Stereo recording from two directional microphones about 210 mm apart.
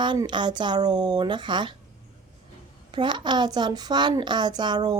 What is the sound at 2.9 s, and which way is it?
A woman's voice, 20° right (ahead or behind).